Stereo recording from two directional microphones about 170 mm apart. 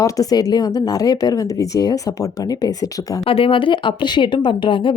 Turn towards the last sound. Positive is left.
turn(degrees=30)  # may be behind; listen again after turning